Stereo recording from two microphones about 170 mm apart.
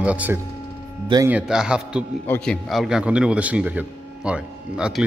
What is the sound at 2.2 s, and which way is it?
A man's voice, 5° left (ahead or behind).